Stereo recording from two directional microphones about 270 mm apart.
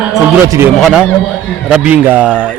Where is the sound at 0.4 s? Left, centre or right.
Centre.